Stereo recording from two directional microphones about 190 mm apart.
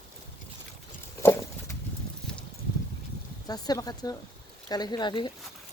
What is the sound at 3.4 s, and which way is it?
Speech, 20° left (ahead or behind).